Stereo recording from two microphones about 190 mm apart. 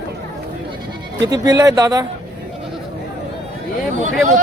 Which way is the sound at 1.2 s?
20° right (ahead or behind).